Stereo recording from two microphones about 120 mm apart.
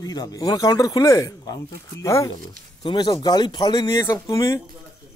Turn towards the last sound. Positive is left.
turn(degrees=25)  # may be behind; listen again after turning